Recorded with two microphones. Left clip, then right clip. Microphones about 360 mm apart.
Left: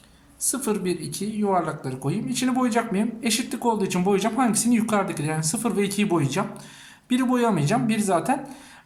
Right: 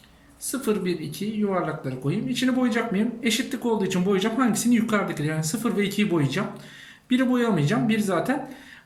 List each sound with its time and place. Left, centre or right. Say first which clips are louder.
0.4 s speech: even; centre